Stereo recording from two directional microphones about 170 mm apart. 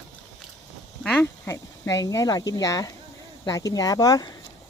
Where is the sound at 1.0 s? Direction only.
5° left (ahead or behind).